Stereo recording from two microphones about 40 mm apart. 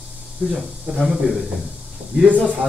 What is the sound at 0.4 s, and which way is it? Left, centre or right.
Speech, right.